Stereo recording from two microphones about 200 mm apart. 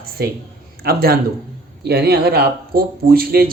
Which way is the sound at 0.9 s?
50° right (ahead or behind).